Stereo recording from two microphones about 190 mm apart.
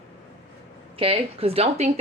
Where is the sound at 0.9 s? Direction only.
30° right (ahead or behind).